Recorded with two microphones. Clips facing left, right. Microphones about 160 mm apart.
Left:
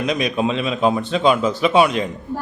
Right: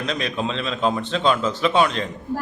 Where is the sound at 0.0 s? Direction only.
15° left (ahead or behind).